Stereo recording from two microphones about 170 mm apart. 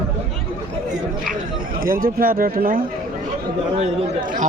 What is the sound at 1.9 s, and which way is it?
Speech, 55° right (ahead or behind).